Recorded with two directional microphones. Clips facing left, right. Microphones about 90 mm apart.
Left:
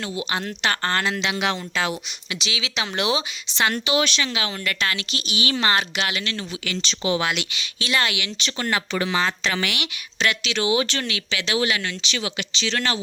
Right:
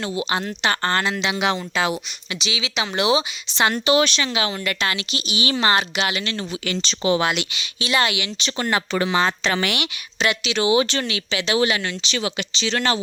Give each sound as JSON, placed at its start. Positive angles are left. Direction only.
{"t": 0.0, "sound": "speech", "side_deg": -30}
{"t": 0.3, "sound": "speech", "side_deg": -10}
{"t": 1.2, "sound": "speech", "side_deg": -15}
{"t": 2.3, "sound": "speech", "side_deg": 0}
{"t": 3.8, "sound": "speech", "side_deg": -35}
{"t": 4.3, "sound": "speech", "side_deg": -25}
{"t": 6.2, "sound": "speech", "side_deg": -30}
{"t": 7.5, "sound": "speech", "side_deg": -20}
{"t": 8.2, "sound": "speech", "side_deg": -25}
{"t": 10.2, "sound": "speech", "side_deg": -15}